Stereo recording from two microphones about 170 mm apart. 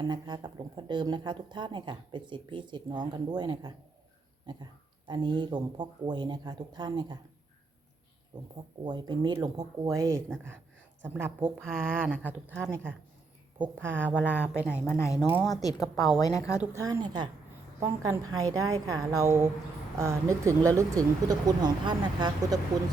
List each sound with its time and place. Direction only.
0.1 s speech: 25° right (ahead or behind)
8.3 s speech: 25° right (ahead or behind); by 14.7 s 5° right (ahead or behind)
14.8 s a woman's voice: 15° left (ahead or behind)
16.7 s speech: 20° right (ahead or behind)